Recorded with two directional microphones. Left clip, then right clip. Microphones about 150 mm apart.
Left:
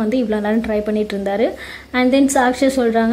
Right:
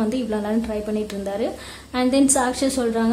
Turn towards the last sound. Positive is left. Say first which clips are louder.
# left 6 dB
turn(degrees=10)  # may be behind; listen again after turning